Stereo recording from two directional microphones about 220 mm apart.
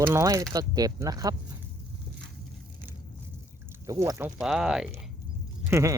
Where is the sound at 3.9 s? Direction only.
15° right (ahead or behind).